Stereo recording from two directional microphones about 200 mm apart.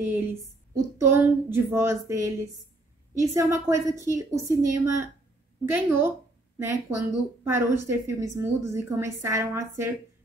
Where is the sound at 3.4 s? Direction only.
15° right (ahead or behind).